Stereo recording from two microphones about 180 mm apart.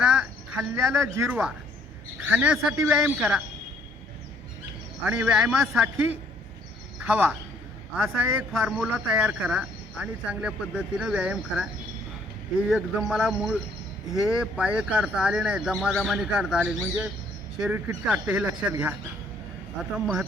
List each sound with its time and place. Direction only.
0.0 s a sound: 5° right (ahead or behind)
0.9 s speech: 15° right (ahead or behind)
5.0 s a man's voice: 10° right (ahead or behind)